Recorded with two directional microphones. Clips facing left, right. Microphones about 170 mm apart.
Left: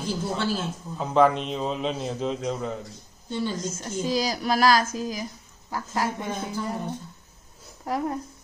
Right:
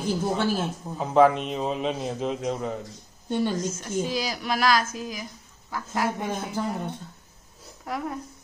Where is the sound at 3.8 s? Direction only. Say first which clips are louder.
Left 1 dB; 40° left (ahead or behind).